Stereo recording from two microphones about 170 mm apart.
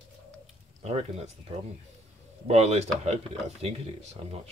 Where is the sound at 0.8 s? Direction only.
35° right (ahead or behind).